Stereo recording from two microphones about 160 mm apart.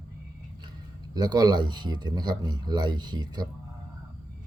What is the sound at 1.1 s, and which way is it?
Speech, 25° right (ahead or behind).